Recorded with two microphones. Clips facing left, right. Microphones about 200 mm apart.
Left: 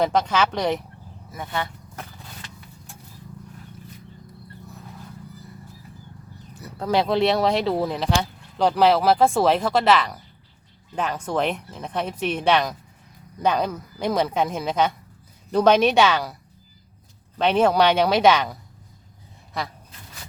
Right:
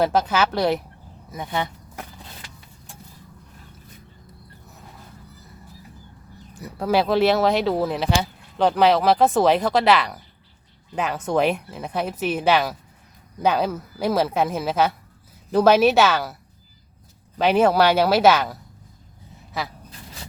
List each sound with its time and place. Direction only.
0.0 s speech: 5° right (ahead or behind)
1.3 s speech: 20° right (ahead or behind)
6.5 s speech: 15° right (ahead or behind)
19.6 s speech: 5° right (ahead or behind)